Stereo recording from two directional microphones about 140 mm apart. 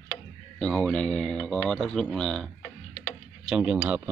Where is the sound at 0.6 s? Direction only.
5° left (ahead or behind).